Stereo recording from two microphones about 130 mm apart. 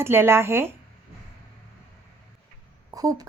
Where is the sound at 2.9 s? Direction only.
30° right (ahead or behind).